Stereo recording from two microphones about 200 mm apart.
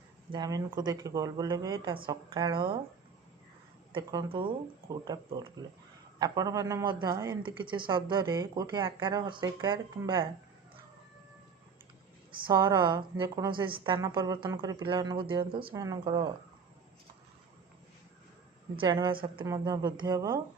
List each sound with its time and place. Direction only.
0.3 s a man's voice: 20° right (ahead or behind)
3.9 s a man's voice: 20° right (ahead or behind)
12.5 s a man's voice: 20° right (ahead or behind)
18.8 s a man's voice: 20° right (ahead or behind)